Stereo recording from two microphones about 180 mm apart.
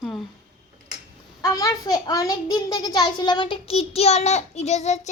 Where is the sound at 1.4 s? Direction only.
20° left (ahead or behind).